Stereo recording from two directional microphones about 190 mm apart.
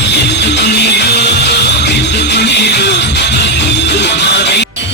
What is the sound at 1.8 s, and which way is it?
Music, 65° left (ahead or behind).